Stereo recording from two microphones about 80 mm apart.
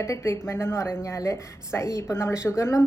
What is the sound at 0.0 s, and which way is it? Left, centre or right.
A woman's voice, left.